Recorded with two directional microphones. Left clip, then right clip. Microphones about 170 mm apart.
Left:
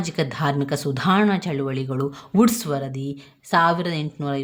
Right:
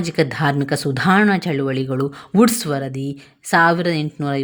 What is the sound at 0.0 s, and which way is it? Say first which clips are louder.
Speech: right 5 dB; 20° right (ahead or behind).